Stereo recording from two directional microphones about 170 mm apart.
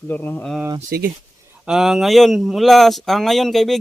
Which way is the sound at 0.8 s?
65° right (ahead or behind).